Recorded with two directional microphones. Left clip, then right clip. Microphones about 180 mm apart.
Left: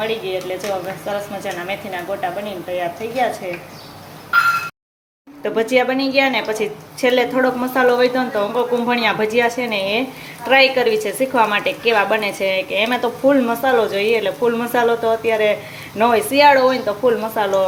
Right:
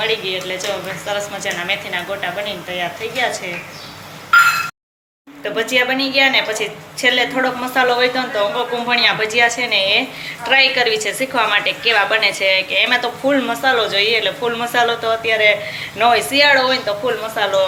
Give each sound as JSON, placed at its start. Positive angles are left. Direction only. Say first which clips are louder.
{"t": 0.0, "sound": "a woman's voice", "louder": "right 2 dB", "side_deg": 60}
{"t": 5.4, "sound": "a woman's voice", "louder": "even", "side_deg": 60}